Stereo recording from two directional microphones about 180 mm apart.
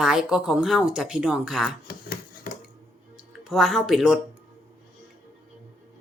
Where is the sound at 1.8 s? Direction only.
55° left (ahead or behind).